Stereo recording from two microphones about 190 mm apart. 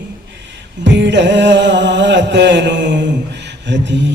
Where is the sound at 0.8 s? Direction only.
65° right (ahead or behind).